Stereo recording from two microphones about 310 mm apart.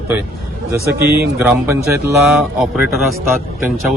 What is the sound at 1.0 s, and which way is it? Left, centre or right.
Speech, right.